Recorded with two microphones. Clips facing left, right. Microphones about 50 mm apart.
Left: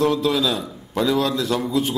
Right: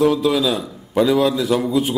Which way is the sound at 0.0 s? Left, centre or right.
Centre.